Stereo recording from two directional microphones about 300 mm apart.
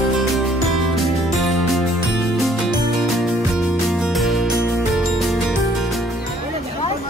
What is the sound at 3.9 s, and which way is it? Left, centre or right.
Music, centre.